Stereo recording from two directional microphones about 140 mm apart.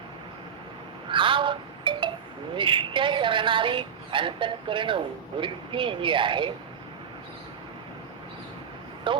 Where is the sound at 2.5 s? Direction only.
35° right (ahead or behind).